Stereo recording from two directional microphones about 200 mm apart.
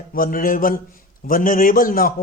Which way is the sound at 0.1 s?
45° left (ahead or behind).